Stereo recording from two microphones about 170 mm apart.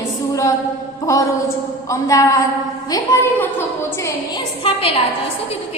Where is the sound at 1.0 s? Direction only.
20° left (ahead or behind).